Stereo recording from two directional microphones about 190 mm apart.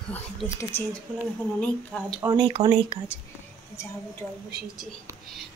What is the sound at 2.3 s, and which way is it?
Speech, 25° right (ahead or behind).